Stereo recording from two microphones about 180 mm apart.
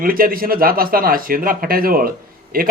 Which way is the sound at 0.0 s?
50° right (ahead or behind).